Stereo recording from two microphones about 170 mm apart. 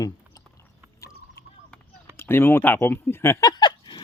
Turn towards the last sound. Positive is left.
turn(degrees=25)  # may be behind; listen again after turning